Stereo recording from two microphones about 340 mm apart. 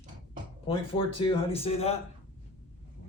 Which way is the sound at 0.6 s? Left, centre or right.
Centre.